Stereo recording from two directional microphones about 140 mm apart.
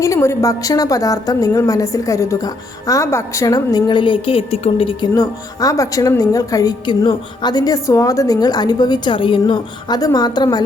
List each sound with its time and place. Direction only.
0.0 s a woman's voice: 20° left (ahead or behind); by 5.0 s 40° left (ahead or behind)
5.1 s a woman's voice: 25° left (ahead or behind)